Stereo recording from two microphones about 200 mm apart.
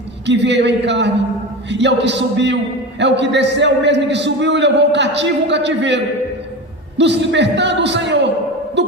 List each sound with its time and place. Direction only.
0.3 s a man's voice: 60° right (ahead or behind)
8.8 s music: 60° right (ahead or behind)